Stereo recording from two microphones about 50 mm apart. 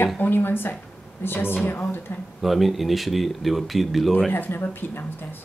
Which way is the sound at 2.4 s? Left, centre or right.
Centre.